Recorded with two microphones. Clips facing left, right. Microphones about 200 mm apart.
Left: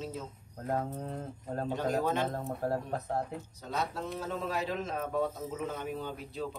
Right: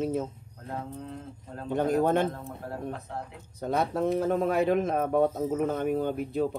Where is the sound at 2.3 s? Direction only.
40° left (ahead or behind).